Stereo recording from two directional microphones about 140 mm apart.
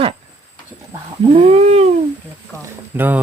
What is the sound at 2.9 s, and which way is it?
Speech, 15° right (ahead or behind).